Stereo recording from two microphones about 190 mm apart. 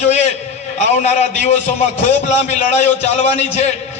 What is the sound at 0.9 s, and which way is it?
A man's voice, 35° left (ahead or behind).